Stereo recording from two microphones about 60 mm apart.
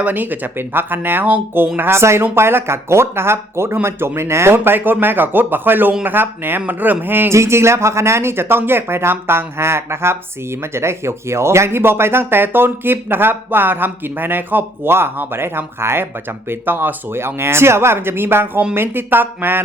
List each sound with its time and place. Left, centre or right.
0.0 s speech: right
1.9 s speech: right
7.3 s speech: right